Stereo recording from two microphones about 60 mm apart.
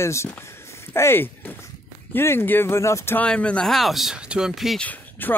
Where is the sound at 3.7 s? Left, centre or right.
Centre.